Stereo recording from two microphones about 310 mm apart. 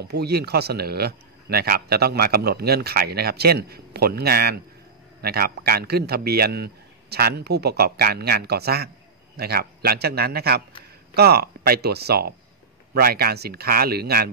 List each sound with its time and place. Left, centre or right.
0.0 s a man's voice: right